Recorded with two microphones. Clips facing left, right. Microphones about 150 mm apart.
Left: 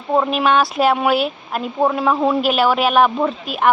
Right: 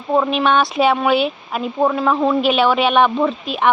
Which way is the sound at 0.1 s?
5° left (ahead or behind).